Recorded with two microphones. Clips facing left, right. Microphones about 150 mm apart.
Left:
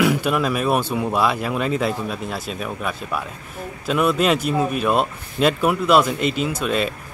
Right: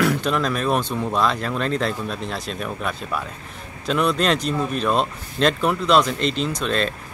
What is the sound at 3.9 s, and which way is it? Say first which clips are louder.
Speech: left 2 dB; 5° left (ahead or behind).